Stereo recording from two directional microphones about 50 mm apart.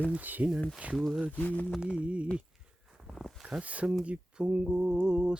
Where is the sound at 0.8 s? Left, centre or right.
Right.